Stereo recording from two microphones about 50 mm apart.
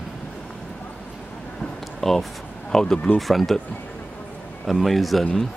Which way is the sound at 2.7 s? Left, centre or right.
Centre.